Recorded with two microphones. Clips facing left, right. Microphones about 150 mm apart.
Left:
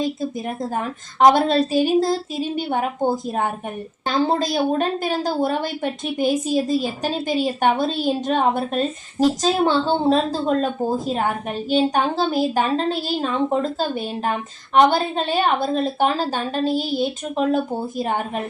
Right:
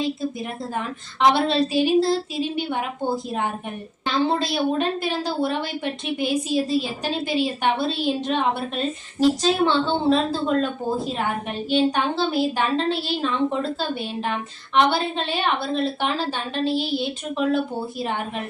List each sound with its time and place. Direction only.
0.8 s a woman's voice: 45° left (ahead or behind)